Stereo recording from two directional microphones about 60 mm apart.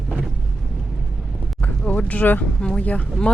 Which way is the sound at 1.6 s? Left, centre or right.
Left.